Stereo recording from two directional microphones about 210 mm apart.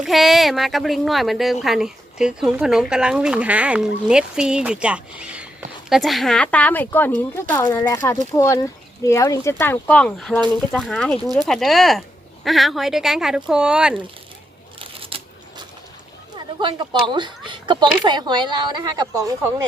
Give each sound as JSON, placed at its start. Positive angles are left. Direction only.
{"t": 0.0, "sound": "speech", "side_deg": 0}
{"t": 14.8, "sound": "a sound", "side_deg": -25}
{"t": 16.6, "sound": "speech", "side_deg": -20}